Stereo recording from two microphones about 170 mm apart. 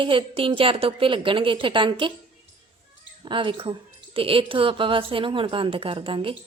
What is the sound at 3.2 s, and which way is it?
Speech, 30° right (ahead or behind).